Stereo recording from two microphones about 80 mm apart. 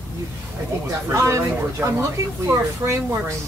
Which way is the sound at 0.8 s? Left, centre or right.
Right.